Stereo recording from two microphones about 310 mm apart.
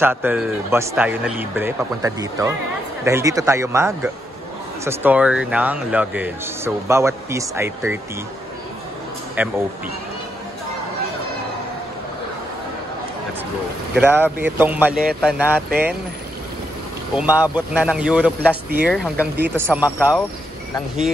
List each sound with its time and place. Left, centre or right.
0.0 s speech: centre
9.4 s speech: centre
13.9 s speech: centre
15.7 s speech: right
17.2 s speech: centre